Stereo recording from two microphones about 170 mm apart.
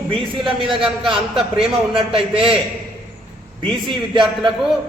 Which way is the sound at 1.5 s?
30° right (ahead or behind).